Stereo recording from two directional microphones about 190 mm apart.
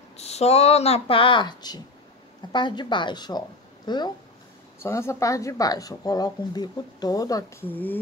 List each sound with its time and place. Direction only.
0.2 s speech: 35° left (ahead or behind); by 8.0 s 10° left (ahead or behind)